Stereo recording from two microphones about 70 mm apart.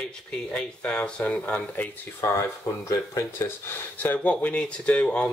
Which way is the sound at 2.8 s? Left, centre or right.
Left.